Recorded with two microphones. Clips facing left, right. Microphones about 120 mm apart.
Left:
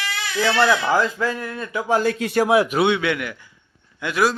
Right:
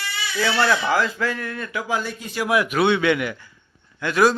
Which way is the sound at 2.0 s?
90° left.